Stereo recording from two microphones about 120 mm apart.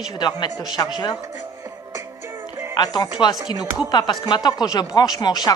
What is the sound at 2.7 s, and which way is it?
Speech, 35° left (ahead or behind).